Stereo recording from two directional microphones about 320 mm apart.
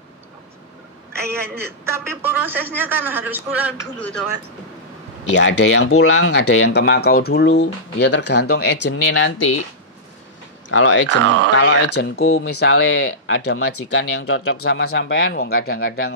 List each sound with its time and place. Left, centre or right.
1.6 s a man's voice: centre
5.3 s speech: left
10.7 s speech: left
11.1 s speech: right
11.5 s speech: left